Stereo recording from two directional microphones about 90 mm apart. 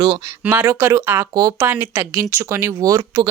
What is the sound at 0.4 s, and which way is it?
Speech, 25° right (ahead or behind).